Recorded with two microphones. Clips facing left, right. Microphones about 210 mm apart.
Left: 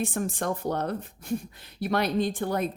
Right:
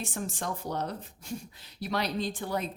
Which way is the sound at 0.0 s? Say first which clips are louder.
Left 6 dB; 55° left (ahead or behind).